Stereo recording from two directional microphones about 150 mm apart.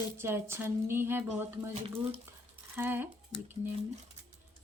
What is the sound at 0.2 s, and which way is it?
Speech, 15° right (ahead or behind).